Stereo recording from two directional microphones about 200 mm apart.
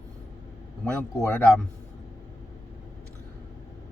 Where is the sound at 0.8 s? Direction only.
10° left (ahead or behind).